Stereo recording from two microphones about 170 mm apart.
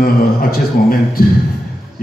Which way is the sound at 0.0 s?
60° left (ahead or behind).